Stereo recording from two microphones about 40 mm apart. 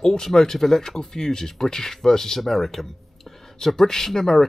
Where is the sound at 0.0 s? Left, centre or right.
Centre.